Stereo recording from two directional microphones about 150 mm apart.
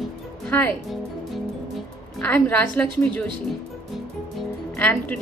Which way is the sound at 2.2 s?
10° left (ahead or behind).